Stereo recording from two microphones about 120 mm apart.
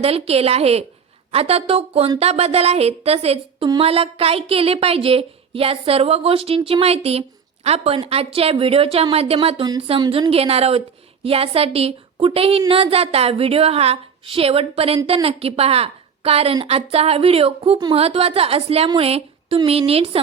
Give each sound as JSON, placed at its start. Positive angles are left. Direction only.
{"t": 0.0, "sound": "a woman's voice", "side_deg": -55}
{"t": 10.1, "sound": "a woman's voice", "side_deg": -50}